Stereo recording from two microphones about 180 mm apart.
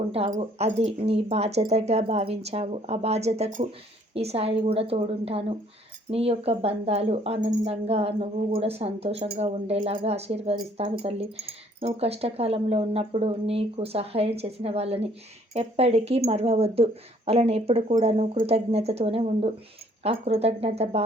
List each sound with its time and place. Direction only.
0.1 s speech: 35° right (ahead or behind)